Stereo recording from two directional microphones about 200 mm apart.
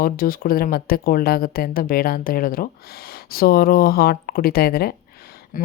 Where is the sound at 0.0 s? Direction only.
45° left (ahead or behind).